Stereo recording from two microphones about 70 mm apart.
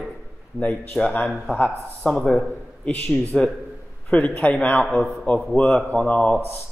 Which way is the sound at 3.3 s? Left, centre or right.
Centre.